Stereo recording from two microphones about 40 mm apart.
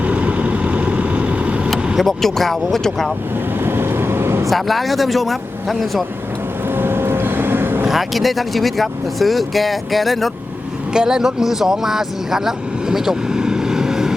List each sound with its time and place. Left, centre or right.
0.0 s vehicle: right
2.0 s speech: centre
3.6 s vehicle: right
4.4 s speech: centre
6.7 s vehicle: right
7.9 s speech: centre
10.9 s speech: centre